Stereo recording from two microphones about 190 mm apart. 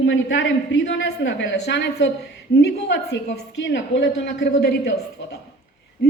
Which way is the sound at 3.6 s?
75° left (ahead or behind).